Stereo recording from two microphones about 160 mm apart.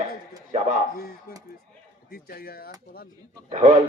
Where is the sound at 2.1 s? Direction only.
70° left (ahead or behind).